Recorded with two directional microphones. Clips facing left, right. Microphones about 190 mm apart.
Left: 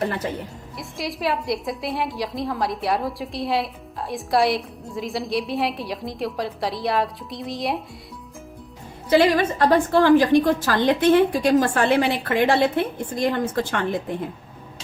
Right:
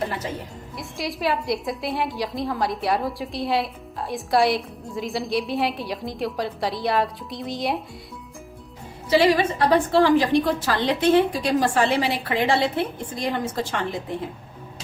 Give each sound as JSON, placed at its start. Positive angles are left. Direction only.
{"t": 0.8, "sound": "a woman's voice", "side_deg": 0}
{"t": 9.0, "sound": "a woman's voice", "side_deg": 50}